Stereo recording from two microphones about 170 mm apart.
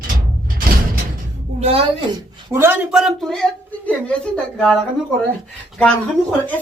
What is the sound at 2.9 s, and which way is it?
Speech, centre (ahead or behind).